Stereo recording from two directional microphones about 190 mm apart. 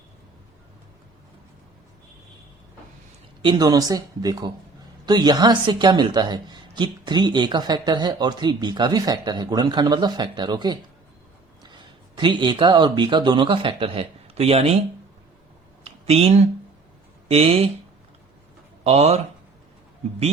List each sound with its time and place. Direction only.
3.4 s speech: 25° right (ahead or behind)
15.8 s a sound: 35° right (ahead or behind)
17.2 s speech: 30° right (ahead or behind)
18.9 s speech: 35° right (ahead or behind)